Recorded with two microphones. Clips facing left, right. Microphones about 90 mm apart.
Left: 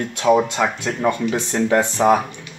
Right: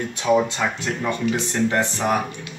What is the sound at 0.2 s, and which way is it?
Speech, 60° left (ahead or behind).